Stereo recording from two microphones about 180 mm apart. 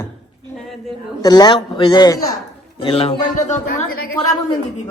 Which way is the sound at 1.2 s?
20° left (ahead or behind).